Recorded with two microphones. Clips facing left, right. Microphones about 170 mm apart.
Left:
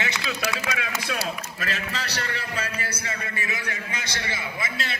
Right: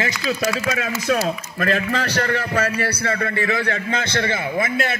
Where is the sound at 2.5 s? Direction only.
70° right (ahead or behind).